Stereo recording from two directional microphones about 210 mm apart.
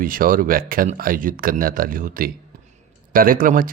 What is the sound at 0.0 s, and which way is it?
Speech, 40° right (ahead or behind).